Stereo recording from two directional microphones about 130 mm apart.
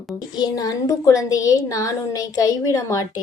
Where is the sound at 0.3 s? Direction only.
30° left (ahead or behind).